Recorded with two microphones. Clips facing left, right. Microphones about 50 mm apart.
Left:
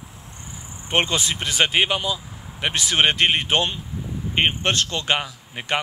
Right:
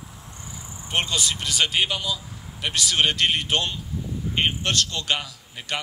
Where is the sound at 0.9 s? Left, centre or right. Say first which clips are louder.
Left 4 dB; left.